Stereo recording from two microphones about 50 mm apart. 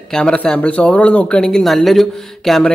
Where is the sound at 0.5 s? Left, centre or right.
Left.